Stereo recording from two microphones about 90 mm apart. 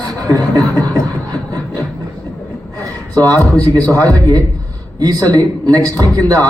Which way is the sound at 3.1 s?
45° right (ahead or behind).